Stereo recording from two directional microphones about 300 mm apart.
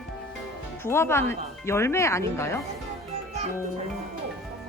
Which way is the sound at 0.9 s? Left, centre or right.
Centre.